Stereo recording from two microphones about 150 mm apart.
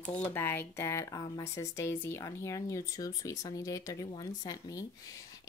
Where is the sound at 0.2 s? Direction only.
15° left (ahead or behind).